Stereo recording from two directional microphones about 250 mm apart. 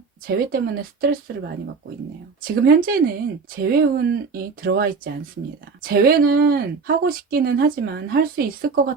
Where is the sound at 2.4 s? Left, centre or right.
Right.